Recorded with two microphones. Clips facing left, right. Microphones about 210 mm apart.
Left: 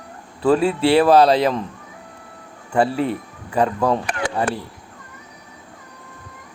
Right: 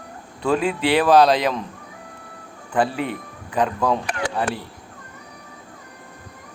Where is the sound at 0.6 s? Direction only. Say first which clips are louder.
Left 4 dB; 40° left (ahead or behind).